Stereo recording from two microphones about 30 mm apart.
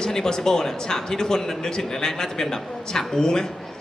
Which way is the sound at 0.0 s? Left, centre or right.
Centre.